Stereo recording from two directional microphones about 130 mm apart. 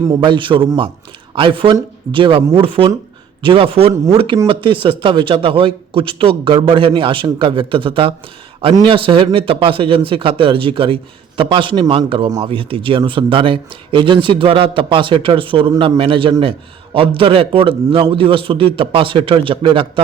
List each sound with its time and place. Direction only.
0.2 s a man's voice: 40° right (ahead or behind)